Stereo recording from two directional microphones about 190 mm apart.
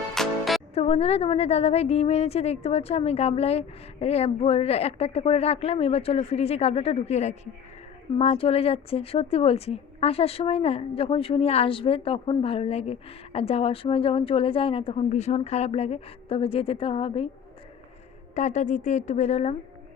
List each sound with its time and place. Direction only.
0.1 s music: centre (ahead or behind)
0.7 s a woman's voice: 35° left (ahead or behind)
18.3 s a woman's voice: 40° left (ahead or behind)